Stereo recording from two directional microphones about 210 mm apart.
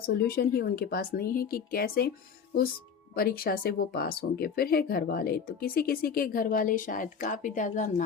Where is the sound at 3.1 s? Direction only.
45° left (ahead or behind).